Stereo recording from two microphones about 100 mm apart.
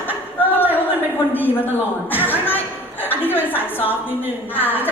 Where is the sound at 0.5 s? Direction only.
20° left (ahead or behind).